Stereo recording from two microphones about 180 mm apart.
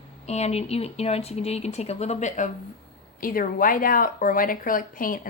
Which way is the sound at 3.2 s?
50° left (ahead or behind).